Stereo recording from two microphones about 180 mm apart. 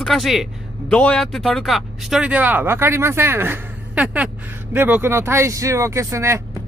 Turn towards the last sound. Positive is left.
turn(degrees=-15)  # may be behind; listen again after turning